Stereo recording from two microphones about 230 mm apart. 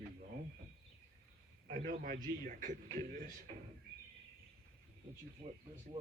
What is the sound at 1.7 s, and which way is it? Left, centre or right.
Speech, right.